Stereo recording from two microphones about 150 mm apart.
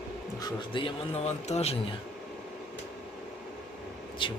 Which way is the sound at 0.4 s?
35° left (ahead or behind).